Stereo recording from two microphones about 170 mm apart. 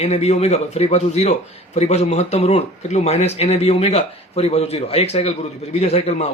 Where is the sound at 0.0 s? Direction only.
40° left (ahead or behind).